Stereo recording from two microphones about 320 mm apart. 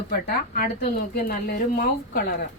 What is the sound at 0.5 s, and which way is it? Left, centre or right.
A woman's voice, left.